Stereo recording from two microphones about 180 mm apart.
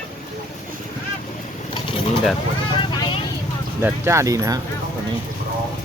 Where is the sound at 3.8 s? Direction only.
15° right (ahead or behind).